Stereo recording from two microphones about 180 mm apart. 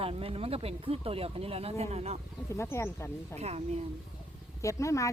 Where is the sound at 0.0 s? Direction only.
30° right (ahead or behind).